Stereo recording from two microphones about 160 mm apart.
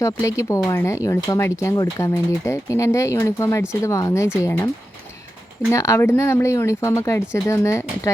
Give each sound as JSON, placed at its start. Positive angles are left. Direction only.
{"t": 0.0, "sound": "speech", "side_deg": 20}
{"t": 5.7, "sound": "speech", "side_deg": 20}